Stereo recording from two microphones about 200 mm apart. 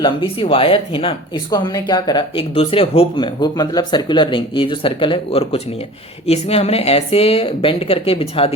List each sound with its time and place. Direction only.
0.0 s speech: 25° left (ahead or behind)